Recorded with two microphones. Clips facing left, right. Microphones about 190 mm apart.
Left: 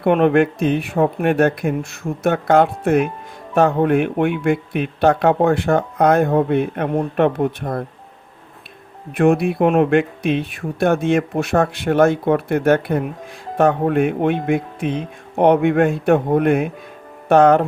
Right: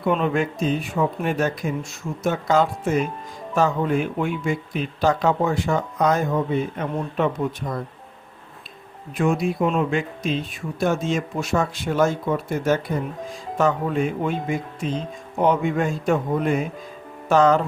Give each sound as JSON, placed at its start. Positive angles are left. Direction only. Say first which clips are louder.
{"t": 0.0, "sound": "speech", "louder": "left 7 dB", "side_deg": 60}
{"t": 9.1, "sound": "speech", "louder": "left 6 dB", "side_deg": 60}